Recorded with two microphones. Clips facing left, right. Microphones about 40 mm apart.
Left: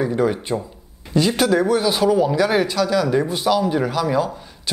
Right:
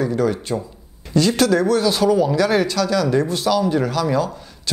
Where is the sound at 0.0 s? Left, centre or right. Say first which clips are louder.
Even; centre.